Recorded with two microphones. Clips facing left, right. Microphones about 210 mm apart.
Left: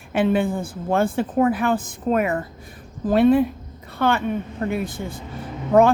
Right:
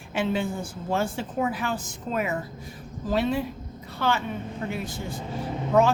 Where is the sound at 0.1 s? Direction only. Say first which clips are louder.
Left 7 dB; 55° left (ahead or behind).